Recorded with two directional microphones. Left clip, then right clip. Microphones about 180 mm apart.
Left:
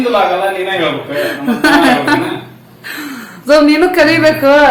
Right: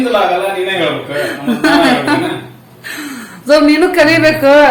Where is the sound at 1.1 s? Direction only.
10° left (ahead or behind).